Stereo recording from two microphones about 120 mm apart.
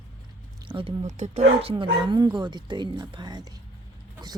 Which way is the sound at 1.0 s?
75° right (ahead or behind).